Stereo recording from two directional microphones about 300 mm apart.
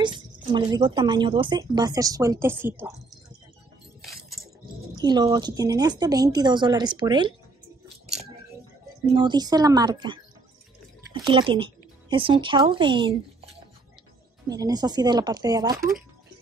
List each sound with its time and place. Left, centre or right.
0.0 s speech: centre
5.0 s speech: centre
9.1 s speech: centre
11.2 s speech: centre